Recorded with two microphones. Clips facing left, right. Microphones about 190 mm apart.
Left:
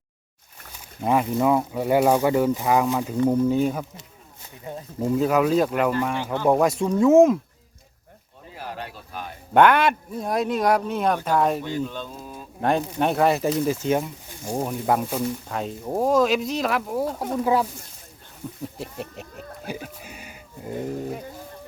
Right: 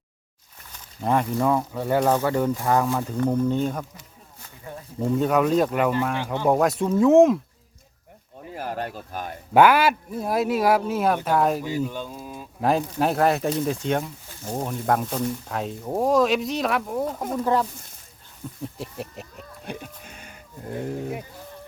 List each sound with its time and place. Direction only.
0.7 s speech: 5° left (ahead or behind)
4.9 s speech: 5° left (ahead or behind)
8.5 s speech: 45° right (ahead or behind)
9.6 s speech: 5° right (ahead or behind)
18.8 s speech: centre (ahead or behind)